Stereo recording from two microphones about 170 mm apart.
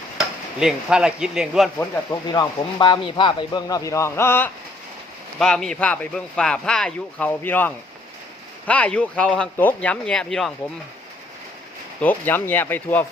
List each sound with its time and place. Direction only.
0.2 s speech: 5° right (ahead or behind)
2.2 s speech: 25° left (ahead or behind)
5.4 s speech: 5° left (ahead or behind)
11.9 s speech: 10° left (ahead or behind)